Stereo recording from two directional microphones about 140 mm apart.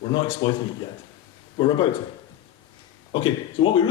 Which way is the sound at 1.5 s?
35° left (ahead or behind).